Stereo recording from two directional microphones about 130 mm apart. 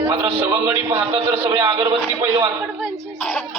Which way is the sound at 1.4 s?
20° right (ahead or behind).